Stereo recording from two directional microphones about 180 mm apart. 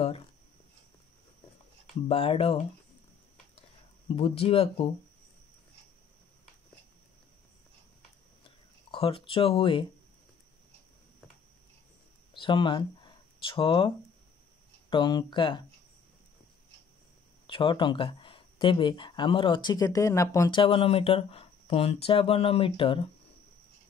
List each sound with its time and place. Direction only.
2.0 s speech: 30° left (ahead or behind)
4.1 s speech: 30° left (ahead or behind)
8.5 s speech: 30° left (ahead or behind)
12.4 s speech: 25° left (ahead or behind)
17.5 s speech: 30° left (ahead or behind)